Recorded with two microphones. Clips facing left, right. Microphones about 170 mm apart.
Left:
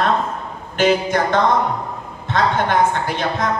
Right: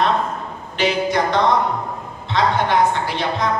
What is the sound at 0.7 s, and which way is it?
A woman's voice, 50° left (ahead or behind).